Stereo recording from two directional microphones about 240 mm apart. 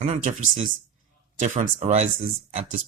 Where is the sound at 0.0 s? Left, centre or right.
Right.